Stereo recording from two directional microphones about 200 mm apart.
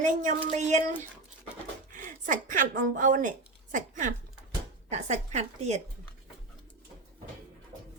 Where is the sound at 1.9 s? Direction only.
40° right (ahead or behind).